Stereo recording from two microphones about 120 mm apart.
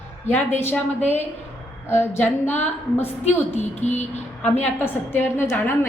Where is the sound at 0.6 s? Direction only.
15° left (ahead or behind).